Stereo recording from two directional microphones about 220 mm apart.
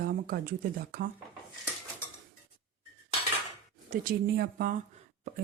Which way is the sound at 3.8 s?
40° right (ahead or behind).